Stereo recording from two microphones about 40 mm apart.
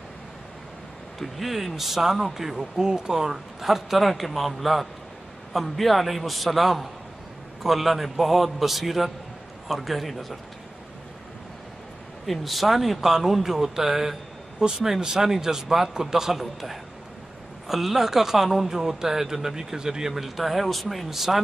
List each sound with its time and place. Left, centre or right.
1.2 s speech: centre
12.3 s speech: centre